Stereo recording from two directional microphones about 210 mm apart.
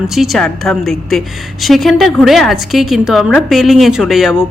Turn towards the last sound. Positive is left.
turn(degrees=0)  # may be behind; listen again after turning